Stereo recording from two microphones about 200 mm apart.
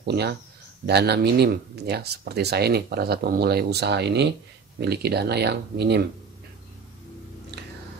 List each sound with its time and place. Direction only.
0.1 s speech: 55° right (ahead or behind)